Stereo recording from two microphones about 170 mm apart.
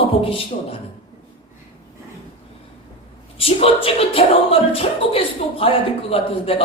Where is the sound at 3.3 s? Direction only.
35° left (ahead or behind).